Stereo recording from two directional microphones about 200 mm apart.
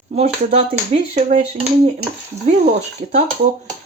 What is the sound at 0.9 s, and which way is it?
Speech, 30° right (ahead or behind).